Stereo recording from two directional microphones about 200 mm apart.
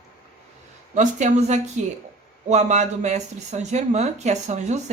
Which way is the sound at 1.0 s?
35° right (ahead or behind).